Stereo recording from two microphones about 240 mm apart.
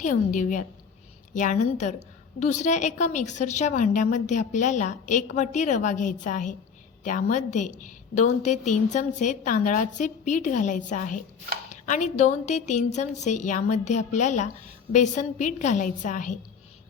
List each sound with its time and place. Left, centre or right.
0.0 s a woman's voice: left